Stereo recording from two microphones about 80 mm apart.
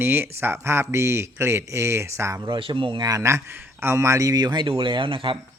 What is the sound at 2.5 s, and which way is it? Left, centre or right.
Speech, right.